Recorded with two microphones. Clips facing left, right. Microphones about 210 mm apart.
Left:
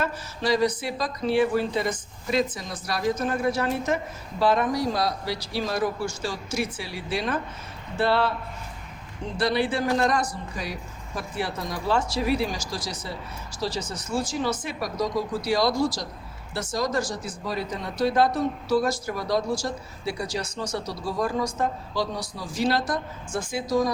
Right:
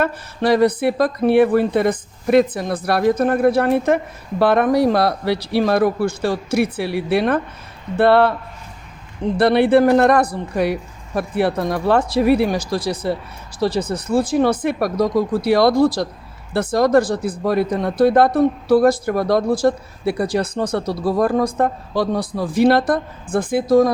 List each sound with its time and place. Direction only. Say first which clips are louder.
0.0 s speech: right 8 dB; 60° right (ahead or behind)
9.4 s speech: right 11 dB; 60° right (ahead or behind)